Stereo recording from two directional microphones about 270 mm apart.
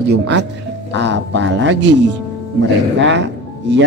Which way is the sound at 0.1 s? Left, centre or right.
Right.